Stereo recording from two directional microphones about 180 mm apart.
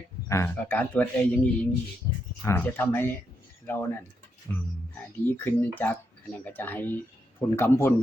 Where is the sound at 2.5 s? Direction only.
10° left (ahead or behind).